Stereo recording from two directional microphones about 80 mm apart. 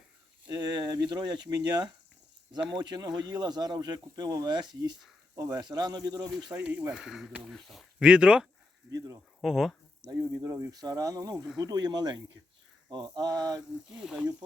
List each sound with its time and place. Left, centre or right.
0.5 s speech: right
6.5 s speech: centre
6.9 s speech: centre
8.0 s speech: centre
9.0 s speech: right
9.4 s a sound: centre
10.2 s speech: right
10.7 s speech: right
13.9 s speech: centre